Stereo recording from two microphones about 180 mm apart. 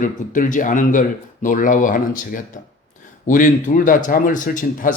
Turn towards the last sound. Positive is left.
turn(degrees=45)  # may be behind; listen again after turning